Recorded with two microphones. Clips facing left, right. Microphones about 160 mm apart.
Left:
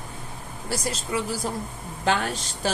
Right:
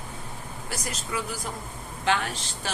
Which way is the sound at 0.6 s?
30° left (ahead or behind).